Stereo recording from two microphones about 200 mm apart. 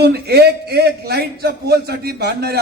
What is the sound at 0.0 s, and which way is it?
A man's voice, 55° right (ahead or behind).